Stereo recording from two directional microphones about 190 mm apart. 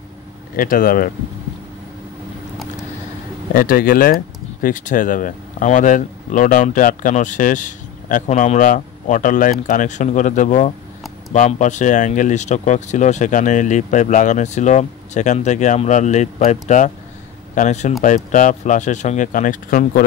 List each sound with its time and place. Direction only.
0.6 s speech: 50° left (ahead or behind)
3.5 s speech: 50° left (ahead or behind)